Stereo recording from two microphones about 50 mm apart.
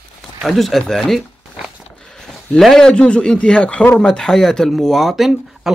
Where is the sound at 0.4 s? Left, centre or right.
Centre.